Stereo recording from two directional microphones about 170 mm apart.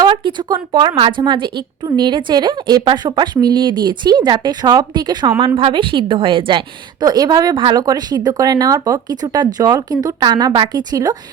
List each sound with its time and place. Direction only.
0.0 s a woman's voice: 30° right (ahead or behind)